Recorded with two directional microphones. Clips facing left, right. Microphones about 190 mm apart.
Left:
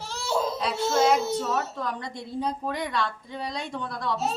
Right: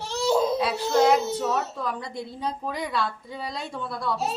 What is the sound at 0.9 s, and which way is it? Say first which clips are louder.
Child singing: right 2 dB; 15° right (ahead or behind).